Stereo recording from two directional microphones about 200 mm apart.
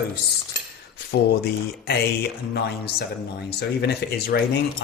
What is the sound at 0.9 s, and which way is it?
Speech, 55° left (ahead or behind).